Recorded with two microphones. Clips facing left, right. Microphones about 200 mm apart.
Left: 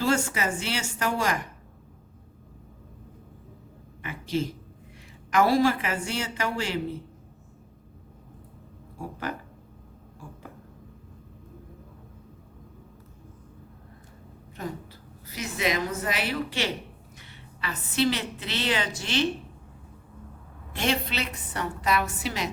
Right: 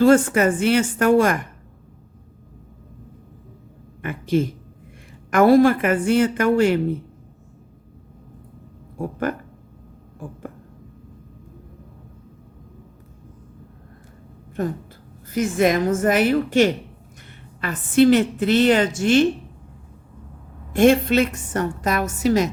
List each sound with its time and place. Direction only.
0.0 s a woman's voice: 55° right (ahead or behind)
4.0 s a woman's voice: 55° right (ahead or behind)
14.6 s a woman's voice: 50° right (ahead or behind)
20.7 s a woman's voice: 50° right (ahead or behind)